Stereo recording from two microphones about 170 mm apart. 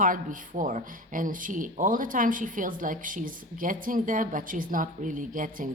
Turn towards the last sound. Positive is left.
turn(degrees=-50)  # may be behind; listen again after turning